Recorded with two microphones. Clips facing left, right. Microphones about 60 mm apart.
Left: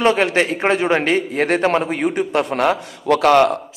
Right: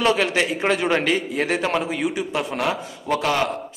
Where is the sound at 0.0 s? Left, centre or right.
Left.